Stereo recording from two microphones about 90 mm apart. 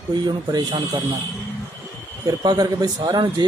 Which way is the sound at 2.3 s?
50° right (ahead or behind).